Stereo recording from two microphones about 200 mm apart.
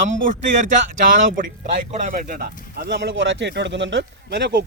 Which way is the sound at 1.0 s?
45° right (ahead or behind).